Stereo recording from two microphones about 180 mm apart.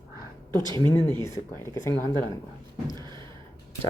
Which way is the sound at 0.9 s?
15° left (ahead or behind).